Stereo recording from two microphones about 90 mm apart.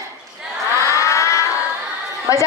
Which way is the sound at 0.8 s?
35° left (ahead or behind).